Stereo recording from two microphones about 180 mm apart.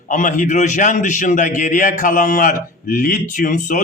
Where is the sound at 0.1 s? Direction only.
45° left (ahead or behind).